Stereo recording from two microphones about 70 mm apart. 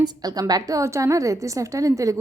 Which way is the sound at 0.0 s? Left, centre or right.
Right.